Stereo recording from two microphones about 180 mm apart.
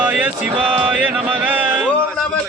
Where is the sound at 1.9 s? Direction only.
5° left (ahead or behind).